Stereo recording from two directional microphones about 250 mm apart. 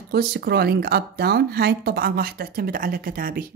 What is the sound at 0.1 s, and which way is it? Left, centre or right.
Speech, right.